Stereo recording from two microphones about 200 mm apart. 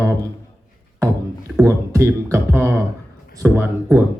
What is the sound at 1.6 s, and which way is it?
Speech, 15° right (ahead or behind).